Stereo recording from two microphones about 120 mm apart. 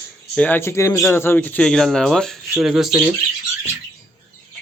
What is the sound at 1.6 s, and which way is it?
Speech, 5° left (ahead or behind).